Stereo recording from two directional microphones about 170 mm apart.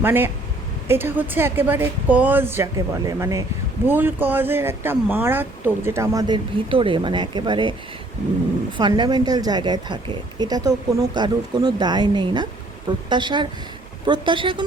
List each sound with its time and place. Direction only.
0.0 s speech: 10° right (ahead or behind); by 7.8 s 30° right (ahead or behind)
8.8 s speech: 25° right (ahead or behind)